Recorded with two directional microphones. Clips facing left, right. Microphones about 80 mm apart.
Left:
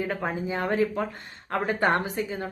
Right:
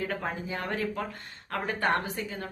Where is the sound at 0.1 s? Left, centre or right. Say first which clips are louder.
Left 4 dB; centre.